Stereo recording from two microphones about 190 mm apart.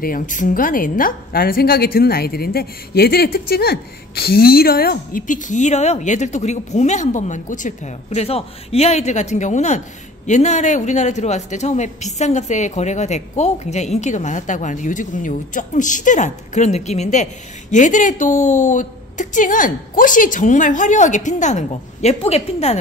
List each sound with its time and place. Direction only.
0.0 s a woman's voice: 45° left (ahead or behind)